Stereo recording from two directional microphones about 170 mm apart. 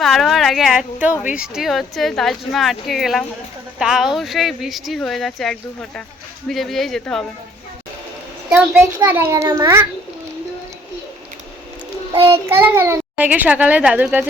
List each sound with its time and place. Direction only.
0.0 s speech: centre (ahead or behind)
8.4 s a child's voice: 10° right (ahead or behind)
12.1 s child singing: 35° right (ahead or behind)
12.5 s a child's voice: 15° right (ahead or behind)